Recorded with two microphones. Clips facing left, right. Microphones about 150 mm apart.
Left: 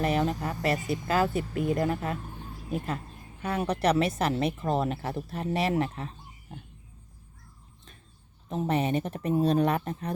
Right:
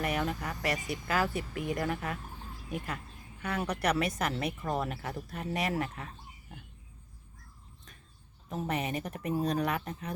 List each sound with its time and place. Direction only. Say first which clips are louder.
0.0 s speech: left 5 dB; 25° left (ahead or behind)
8.4 s speech: left 6 dB; 25° left (ahead or behind)